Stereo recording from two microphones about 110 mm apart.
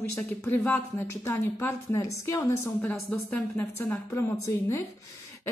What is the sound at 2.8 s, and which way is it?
A woman's voice, 15° left (ahead or behind).